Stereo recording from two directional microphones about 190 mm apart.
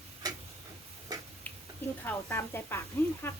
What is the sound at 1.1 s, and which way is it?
Tick-tock, 20° right (ahead or behind).